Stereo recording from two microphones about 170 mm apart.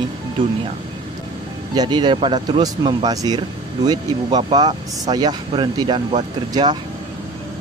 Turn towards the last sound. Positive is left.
turn(degrees=-25)  # may be behind; listen again after turning